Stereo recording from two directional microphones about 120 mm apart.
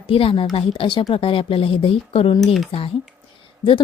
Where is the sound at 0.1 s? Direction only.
50° left (ahead or behind).